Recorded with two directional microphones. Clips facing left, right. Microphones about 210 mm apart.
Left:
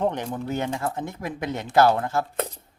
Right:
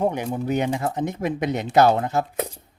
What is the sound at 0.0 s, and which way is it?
A man's voice, 10° right (ahead or behind).